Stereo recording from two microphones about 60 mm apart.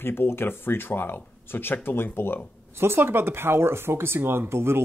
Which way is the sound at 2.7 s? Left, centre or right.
Right.